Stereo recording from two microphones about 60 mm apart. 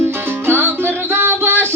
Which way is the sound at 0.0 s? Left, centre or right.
Right.